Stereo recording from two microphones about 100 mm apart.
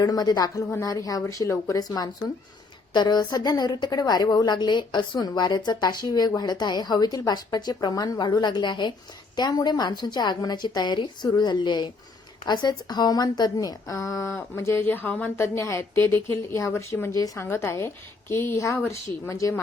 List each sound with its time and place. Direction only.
0.0 s a woman's voice: 40° left (ahead or behind)
0.7 s a woman's voice: 30° left (ahead or behind)